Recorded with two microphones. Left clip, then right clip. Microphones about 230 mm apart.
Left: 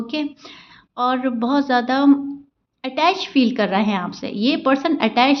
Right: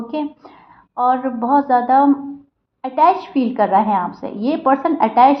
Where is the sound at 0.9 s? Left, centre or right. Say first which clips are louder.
Right 3 dB; left.